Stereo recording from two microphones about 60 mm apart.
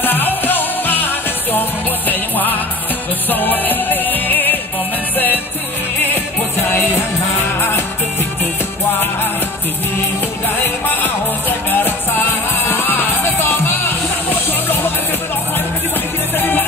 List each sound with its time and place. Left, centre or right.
0.0 s music: left
8.9 s music: left
10.6 s music: left
16.3 s music: left